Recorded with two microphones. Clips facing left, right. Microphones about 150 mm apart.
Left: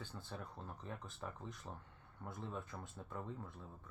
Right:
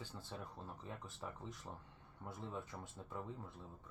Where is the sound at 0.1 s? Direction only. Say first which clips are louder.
Even; 10° right (ahead or behind).